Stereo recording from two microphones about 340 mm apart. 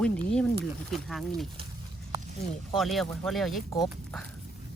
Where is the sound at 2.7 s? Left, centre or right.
Centre.